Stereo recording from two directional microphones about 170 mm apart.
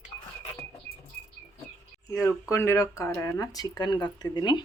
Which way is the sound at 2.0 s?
15° left (ahead or behind).